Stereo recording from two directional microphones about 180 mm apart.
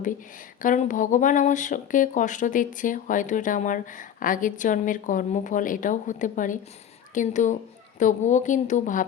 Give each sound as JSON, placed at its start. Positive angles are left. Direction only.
{"t": 0.6, "sound": "speech", "side_deg": 45}